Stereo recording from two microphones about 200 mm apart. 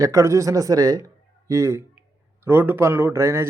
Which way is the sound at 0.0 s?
15° right (ahead or behind).